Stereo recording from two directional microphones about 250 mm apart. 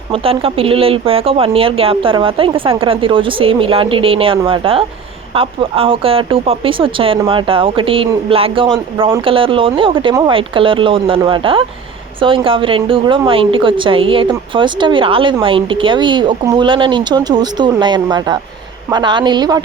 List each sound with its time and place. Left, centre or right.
0.1 s speech: right